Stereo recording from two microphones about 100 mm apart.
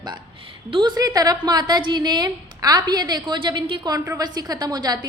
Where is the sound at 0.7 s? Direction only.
50° right (ahead or behind).